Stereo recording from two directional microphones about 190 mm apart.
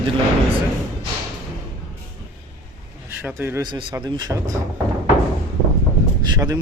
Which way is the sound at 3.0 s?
10° right (ahead or behind).